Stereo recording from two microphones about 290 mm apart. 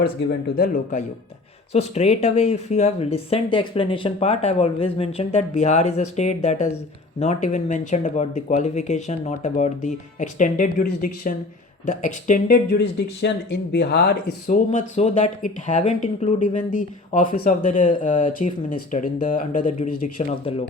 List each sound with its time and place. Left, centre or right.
0.0 s speech: left